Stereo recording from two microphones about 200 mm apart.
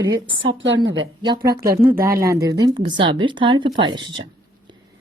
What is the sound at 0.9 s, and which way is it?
Speech, 20° right (ahead or behind).